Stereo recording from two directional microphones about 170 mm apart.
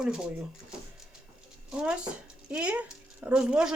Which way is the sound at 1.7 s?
5° right (ahead or behind).